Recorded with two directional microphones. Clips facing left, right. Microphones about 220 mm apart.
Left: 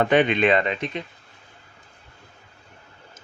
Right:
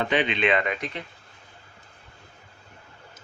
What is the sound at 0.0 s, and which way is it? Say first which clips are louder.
Speech: left 6 dB; 50° left (ahead or behind).